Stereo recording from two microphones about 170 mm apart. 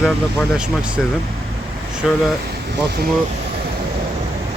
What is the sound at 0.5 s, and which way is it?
Speech, 5° right (ahead or behind).